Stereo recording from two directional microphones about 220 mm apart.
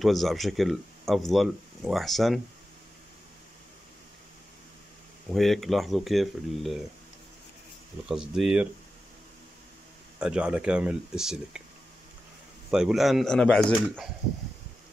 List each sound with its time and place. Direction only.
0.0 s speech: centre (ahead or behind)
5.3 s speech: centre (ahead or behind)
8.1 s speech: 5° right (ahead or behind)
10.2 s speech: 5° right (ahead or behind)
12.7 s speech: centre (ahead or behind)